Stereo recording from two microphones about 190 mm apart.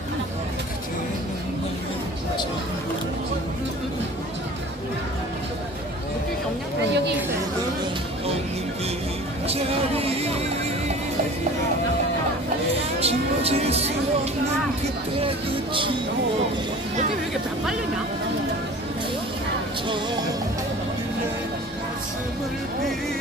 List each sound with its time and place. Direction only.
9.5 s music: 30° right (ahead or behind)
13.0 s music: 30° right (ahead or behind)
15.1 s music: 30° right (ahead or behind)